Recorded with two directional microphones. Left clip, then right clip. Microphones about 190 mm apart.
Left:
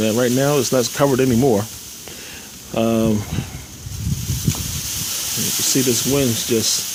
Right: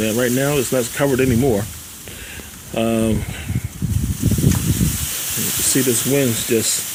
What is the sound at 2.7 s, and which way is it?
Speech, 15° left (ahead or behind).